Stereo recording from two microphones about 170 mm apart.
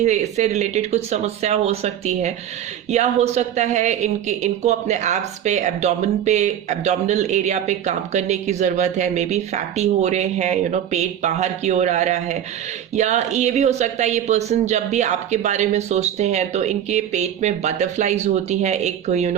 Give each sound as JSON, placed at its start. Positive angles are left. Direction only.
{"t": 0.0, "sound": "speech", "side_deg": -45}